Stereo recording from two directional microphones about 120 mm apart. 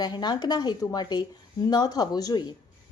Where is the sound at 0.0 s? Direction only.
35° left (ahead or behind).